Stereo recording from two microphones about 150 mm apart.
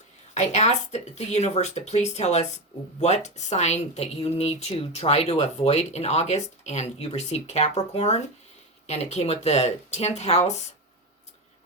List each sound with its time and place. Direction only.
0.3 s a woman's voice: 50° left (ahead or behind)